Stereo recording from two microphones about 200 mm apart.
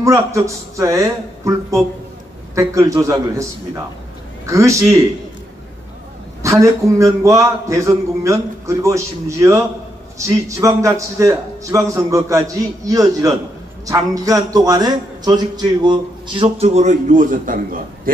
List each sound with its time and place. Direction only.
0.0 s speech: 15° right (ahead or behind)
6.4 s a man's voice: 15° right (ahead or behind)
16.6 s a man's voice: 35° right (ahead or behind)